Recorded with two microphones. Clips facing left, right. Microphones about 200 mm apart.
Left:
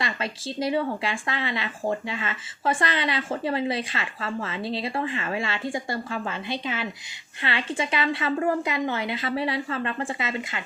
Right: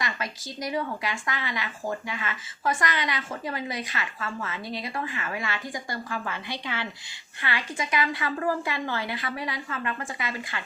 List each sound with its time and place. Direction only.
0.0 s speech: 25° left (ahead or behind)